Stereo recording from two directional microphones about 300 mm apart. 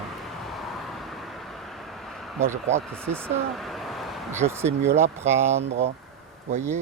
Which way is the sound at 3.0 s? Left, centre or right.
Centre.